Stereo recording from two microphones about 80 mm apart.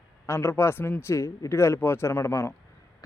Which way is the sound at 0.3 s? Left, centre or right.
Left.